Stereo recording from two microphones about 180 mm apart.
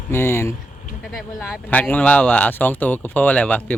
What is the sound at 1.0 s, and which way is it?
Speech, centre (ahead or behind).